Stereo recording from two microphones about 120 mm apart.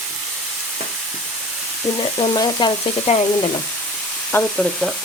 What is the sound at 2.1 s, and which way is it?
Frying, 40° left (ahead or behind).